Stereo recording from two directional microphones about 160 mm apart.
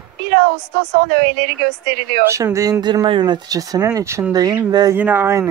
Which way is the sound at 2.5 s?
20° right (ahead or behind).